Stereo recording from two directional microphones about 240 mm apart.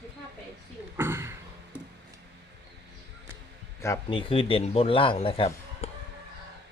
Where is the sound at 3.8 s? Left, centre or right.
Centre.